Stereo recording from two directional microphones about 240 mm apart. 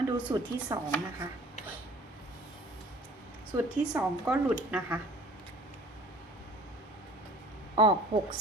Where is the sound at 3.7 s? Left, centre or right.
Centre.